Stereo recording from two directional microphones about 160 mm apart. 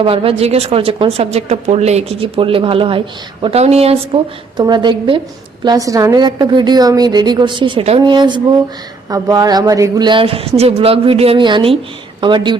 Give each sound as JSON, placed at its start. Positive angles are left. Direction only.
{"t": 0.0, "sound": "a woman's voice", "side_deg": -35}